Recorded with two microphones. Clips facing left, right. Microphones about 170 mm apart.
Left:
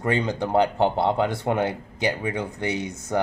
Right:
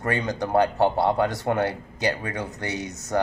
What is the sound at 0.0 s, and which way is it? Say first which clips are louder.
Speech: left 2 dB; 20° left (ahead or behind).